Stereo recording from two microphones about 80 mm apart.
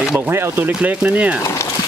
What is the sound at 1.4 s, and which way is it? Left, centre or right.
Speech, left.